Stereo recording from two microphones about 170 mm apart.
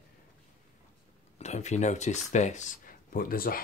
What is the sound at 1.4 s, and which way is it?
Speech, 40° left (ahead or behind).